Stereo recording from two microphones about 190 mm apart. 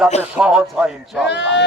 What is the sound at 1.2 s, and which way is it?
Speech, 65° left (ahead or behind).